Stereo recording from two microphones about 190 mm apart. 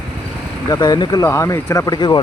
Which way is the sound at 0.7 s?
20° left (ahead or behind).